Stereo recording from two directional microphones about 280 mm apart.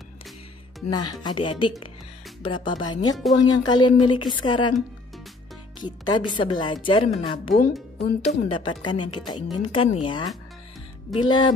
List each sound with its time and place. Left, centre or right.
0.8 s a woman's voice: centre
5.8 s a woman's voice: centre